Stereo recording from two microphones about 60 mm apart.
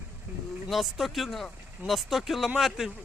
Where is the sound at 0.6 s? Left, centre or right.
Centre.